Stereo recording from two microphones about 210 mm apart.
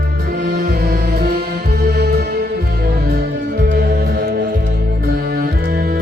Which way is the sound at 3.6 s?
50° right (ahead or behind).